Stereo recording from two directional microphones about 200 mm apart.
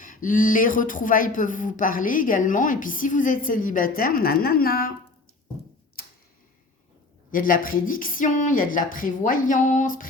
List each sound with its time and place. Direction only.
0.0 s speech: 45° left (ahead or behind)
7.3 s speech: 45° left (ahead or behind)